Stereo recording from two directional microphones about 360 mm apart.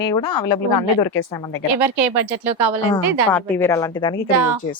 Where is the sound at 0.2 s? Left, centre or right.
Left.